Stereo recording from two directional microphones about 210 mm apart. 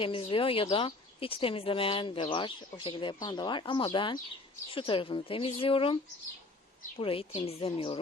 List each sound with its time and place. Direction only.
0.0 s speech: 25° left (ahead or behind)